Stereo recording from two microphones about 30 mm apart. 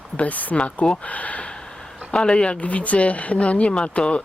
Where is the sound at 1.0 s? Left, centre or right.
Left.